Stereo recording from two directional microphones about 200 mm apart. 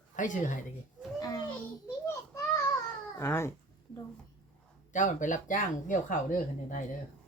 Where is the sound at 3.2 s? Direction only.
15° left (ahead or behind).